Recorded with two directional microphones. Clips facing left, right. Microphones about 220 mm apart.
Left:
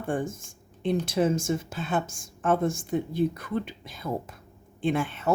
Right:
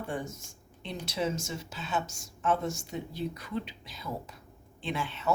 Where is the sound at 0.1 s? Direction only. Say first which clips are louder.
Left 7 dB; 50° left (ahead or behind).